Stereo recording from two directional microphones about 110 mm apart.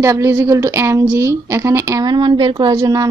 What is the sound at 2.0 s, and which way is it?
A woman's voice, 45° right (ahead or behind).